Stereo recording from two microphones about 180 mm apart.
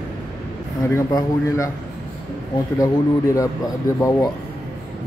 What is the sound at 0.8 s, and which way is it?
Speech, 15° left (ahead or behind).